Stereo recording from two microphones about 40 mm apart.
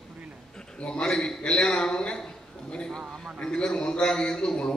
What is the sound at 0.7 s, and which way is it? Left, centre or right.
A man's voice, left.